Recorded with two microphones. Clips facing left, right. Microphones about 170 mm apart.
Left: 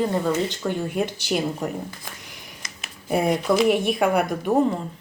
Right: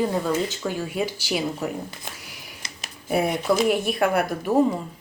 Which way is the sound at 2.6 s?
30° right (ahead or behind).